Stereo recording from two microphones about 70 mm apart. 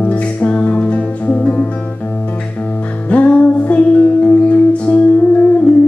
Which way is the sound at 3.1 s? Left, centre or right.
Left.